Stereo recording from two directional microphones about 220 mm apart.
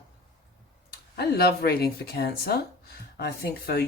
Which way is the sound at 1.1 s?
45° left (ahead or behind).